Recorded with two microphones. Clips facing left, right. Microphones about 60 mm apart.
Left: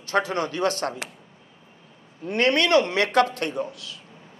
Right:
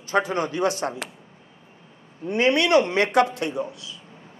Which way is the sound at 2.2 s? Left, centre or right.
Left.